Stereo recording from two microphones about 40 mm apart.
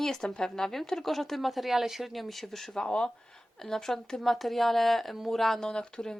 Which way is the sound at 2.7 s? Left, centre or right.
Centre.